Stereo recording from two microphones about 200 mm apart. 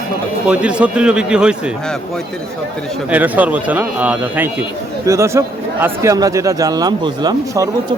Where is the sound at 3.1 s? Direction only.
10° right (ahead or behind).